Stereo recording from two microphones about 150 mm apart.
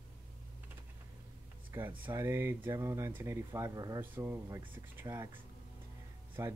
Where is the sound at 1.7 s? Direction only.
15° right (ahead or behind).